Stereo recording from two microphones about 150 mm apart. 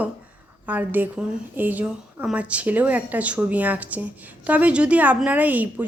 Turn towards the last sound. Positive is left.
turn(degrees=-10)  # may be behind; listen again after turning